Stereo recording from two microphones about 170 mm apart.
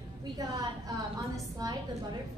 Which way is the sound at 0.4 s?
20° right (ahead or behind).